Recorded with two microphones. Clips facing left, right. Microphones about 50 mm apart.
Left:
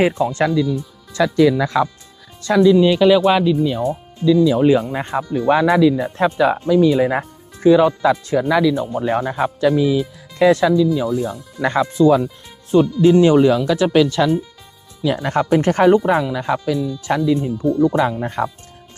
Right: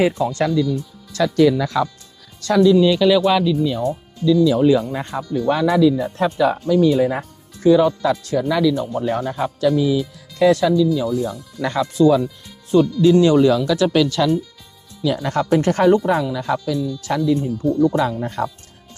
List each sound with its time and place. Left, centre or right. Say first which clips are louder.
0.0 s speech: left 1 dB; left
0.5 s speech: left 1 dB; centre
1.6 s speech: left 2 dB; left